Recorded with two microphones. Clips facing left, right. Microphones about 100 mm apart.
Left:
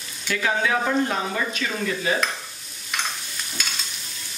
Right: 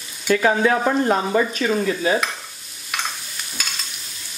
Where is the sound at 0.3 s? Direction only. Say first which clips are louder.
Right 6 dB; 40° right (ahead or behind).